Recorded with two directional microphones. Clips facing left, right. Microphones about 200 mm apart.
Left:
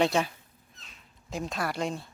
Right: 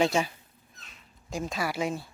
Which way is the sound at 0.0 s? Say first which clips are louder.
Even; centre (ahead or behind).